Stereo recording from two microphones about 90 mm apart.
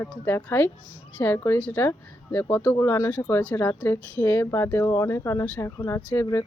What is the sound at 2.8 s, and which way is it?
Speech, 30° left (ahead or behind).